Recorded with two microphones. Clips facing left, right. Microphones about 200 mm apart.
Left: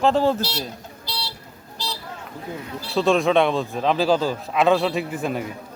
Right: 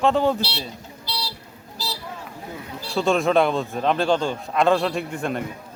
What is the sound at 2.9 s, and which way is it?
Speech, centre (ahead or behind).